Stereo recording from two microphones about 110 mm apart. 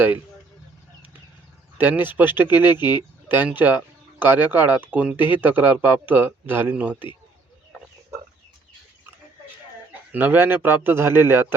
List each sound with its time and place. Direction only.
1.8 s a man's voice: 20° right (ahead or behind)
10.1 s a man's voice: 15° right (ahead or behind)